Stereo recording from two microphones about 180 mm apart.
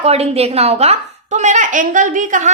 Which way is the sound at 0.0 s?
35° right (ahead or behind).